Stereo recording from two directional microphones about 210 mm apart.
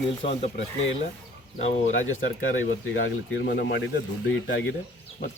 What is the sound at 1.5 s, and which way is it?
Speech, 35° left (ahead or behind).